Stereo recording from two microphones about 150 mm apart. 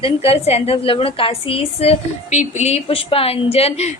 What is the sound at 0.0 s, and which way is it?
A woman's voice, 40° left (ahead or behind).